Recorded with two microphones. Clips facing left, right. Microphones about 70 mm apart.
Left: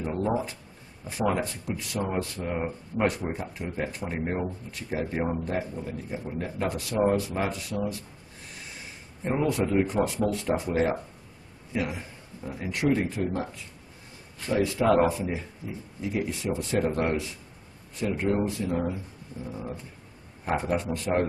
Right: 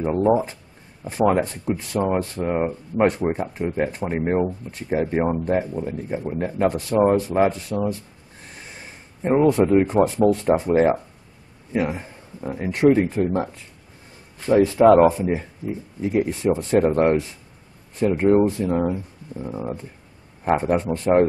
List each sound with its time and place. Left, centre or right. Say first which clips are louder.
0.0 s speech: right 9 dB; right
9.5 s a man's voice: right 8 dB; right
14.4 s speech: right 10 dB; right